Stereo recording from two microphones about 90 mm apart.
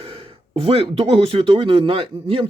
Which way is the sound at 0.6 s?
90° right.